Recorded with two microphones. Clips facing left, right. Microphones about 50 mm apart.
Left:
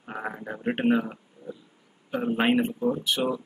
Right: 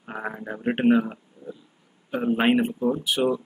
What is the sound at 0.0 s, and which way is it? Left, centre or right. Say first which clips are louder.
A man's voice: right 2 dB; centre.